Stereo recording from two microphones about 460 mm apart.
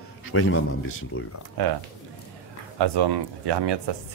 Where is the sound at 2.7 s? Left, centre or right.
Right.